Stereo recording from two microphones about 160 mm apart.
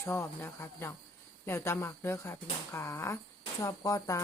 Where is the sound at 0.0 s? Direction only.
15° left (ahead or behind).